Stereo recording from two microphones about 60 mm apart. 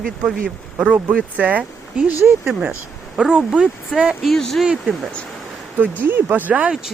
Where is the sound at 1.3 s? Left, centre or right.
Right.